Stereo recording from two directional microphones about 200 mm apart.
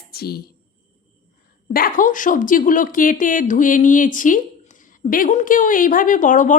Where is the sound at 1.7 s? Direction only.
45° left (ahead or behind).